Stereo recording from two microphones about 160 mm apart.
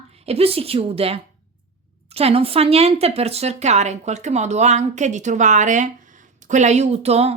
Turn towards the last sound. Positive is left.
turn(degrees=-40)  # may be behind; listen again after turning